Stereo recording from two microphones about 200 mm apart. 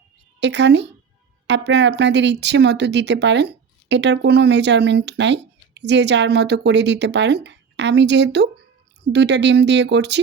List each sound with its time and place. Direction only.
0.3 s a woman's voice: 60° right (ahead or behind)